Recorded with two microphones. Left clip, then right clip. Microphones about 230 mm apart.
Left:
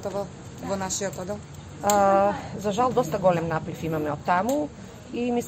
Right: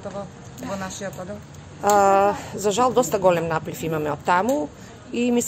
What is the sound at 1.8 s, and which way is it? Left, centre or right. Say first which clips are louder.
Speech: right 3 dB; right.